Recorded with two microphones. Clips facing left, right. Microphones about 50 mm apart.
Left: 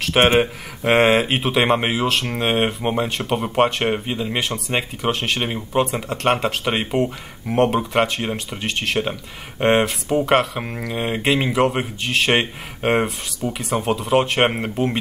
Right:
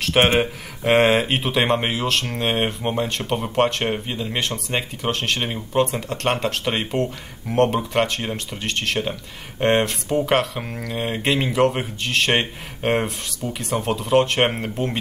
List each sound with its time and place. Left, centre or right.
0.0 s speech: centre